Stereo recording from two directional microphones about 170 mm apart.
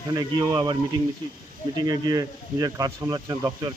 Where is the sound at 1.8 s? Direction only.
20° right (ahead or behind).